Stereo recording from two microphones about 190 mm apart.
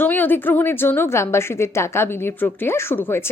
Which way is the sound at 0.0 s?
10° left (ahead or behind).